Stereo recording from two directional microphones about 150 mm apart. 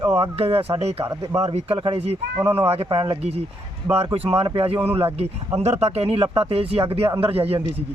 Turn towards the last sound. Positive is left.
turn(degrees=-40)  # may be behind; listen again after turning